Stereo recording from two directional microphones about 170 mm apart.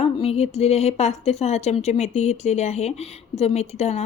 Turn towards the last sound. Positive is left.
turn(degrees=40)  # may be behind; listen again after turning